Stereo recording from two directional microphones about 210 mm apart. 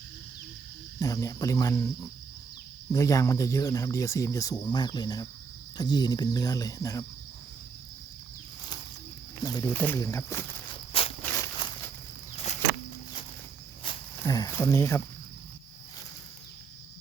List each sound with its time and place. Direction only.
0.9 s speech: 15° left (ahead or behind)
2.9 s speech: 15° left (ahead or behind)
4.6 s cricket: 20° left (ahead or behind)
5.7 s speech: 20° left (ahead or behind)
9.4 s cricket: 20° left (ahead or behind)
9.7 s speech: 10° left (ahead or behind)
11.2 s a sound: 10° left (ahead or behind)
13.9 s cricket: 25° left (ahead or behind)
14.2 s speech: 15° left (ahead or behind)